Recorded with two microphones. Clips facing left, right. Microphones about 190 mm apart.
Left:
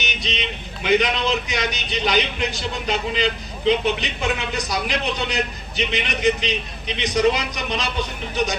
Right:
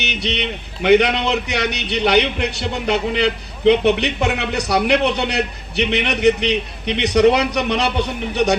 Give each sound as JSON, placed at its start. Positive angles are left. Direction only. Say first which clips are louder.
{"t": 0.0, "sound": "a man's voice", "louder": "right 5 dB", "side_deg": -65}